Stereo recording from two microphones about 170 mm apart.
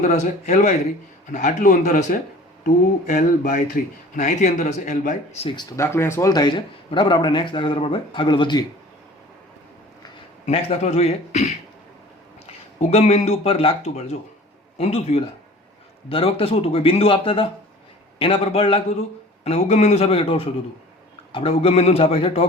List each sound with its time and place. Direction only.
0.0 s speech: 45° left (ahead or behind)
5.5 s speech: 20° left (ahead or behind)
10.4 s speech: 40° left (ahead or behind)
12.8 s speech: 40° left (ahead or behind)